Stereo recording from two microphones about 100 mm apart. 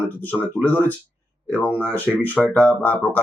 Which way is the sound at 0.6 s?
20° left (ahead or behind).